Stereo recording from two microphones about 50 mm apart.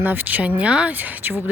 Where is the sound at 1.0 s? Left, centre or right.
Right.